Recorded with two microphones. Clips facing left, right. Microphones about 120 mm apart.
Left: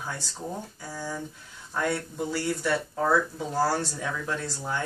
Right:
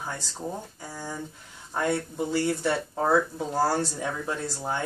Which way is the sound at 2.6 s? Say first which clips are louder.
Right 1 dB; 25° right (ahead or behind).